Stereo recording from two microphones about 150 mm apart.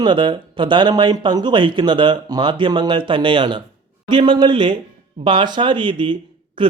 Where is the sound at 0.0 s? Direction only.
30° right (ahead or behind).